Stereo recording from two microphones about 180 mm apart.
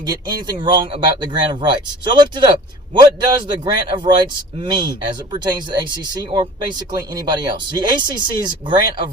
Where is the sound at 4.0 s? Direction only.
25° right (ahead or behind).